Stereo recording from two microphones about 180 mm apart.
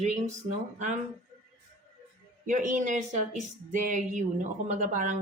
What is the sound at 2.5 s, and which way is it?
A woman's voice, 45° right (ahead or behind).